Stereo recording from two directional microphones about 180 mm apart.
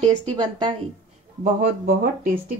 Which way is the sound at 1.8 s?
55° right (ahead or behind).